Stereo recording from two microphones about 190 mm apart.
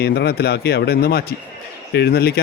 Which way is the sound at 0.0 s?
55° left (ahead or behind).